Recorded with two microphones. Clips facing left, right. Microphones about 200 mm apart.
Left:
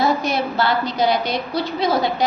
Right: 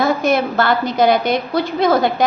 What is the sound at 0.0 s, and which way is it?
A woman's voice, 50° right (ahead or behind).